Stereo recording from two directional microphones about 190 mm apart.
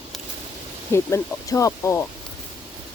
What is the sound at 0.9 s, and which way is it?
Speech, 15° left (ahead or behind).